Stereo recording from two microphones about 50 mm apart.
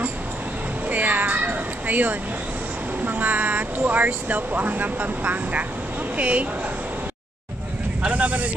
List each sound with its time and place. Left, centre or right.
0.8 s cat: right
3.0 s speech: right
8.0 s speech: right